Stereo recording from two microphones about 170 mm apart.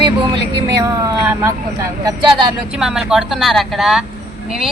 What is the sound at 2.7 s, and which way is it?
A woman's voice, 5° right (ahead or behind).